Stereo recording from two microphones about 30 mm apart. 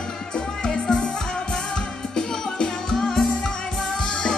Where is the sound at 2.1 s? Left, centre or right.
Left.